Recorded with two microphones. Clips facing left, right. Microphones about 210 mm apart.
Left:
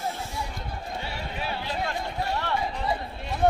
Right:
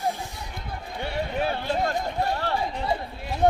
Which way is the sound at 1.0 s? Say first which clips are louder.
Right 12 dB; 55° right (ahead or behind).